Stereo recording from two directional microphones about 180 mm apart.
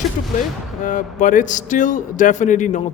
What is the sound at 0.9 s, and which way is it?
A man's voice, 45° left (ahead or behind).